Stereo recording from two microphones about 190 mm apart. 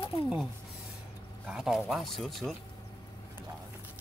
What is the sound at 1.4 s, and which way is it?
Speech, 5° right (ahead or behind).